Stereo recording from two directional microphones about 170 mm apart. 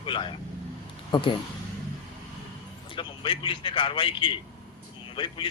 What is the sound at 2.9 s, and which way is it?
A man's voice, 30° left (ahead or behind).